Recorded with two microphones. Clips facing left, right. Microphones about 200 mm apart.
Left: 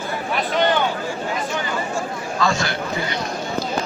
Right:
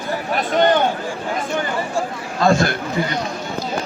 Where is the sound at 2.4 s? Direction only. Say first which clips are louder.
Right 6 dB; 55° right (ahead or behind).